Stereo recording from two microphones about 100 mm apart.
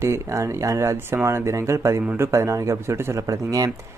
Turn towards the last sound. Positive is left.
turn(degrees=-35)  # may be behind; listen again after turning